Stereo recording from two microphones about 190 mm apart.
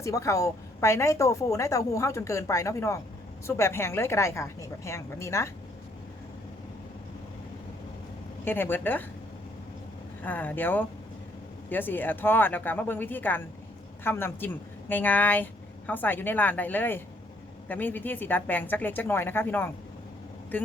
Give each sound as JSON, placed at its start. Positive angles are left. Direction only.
{"t": 0.0, "sound": "a woman's voice", "side_deg": 15}
{"t": 8.4, "sound": "a woman's voice", "side_deg": 10}
{"t": 10.2, "sound": "a woman's voice", "side_deg": 10}